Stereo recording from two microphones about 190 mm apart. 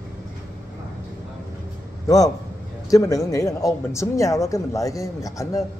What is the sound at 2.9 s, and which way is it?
Speech, 15° left (ahead or behind).